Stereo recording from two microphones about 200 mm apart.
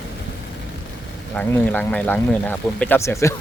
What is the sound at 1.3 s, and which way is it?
Speech, 10° left (ahead or behind).